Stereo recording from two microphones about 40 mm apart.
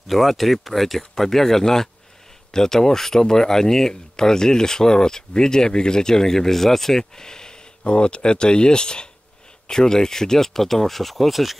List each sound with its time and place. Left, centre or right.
0.1 s speech: centre
7.8 s speech: left; by 11.5 s centre